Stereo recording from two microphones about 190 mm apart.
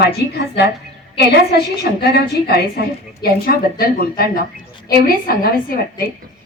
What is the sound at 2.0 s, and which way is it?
A woman's voice, 55° left (ahead or behind).